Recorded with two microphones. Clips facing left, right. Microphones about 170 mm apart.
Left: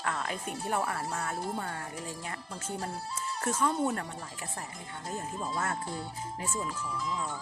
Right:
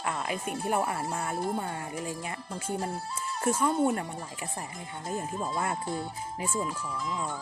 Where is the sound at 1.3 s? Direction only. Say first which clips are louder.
Right 4 dB; 55° right (ahead or behind).